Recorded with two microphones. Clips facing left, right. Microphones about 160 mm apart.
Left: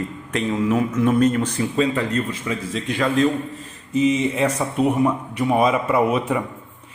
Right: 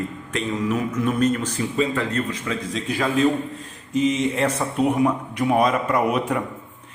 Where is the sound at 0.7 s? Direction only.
30° left (ahead or behind).